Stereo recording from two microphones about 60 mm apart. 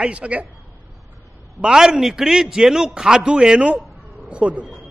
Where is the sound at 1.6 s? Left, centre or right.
Centre.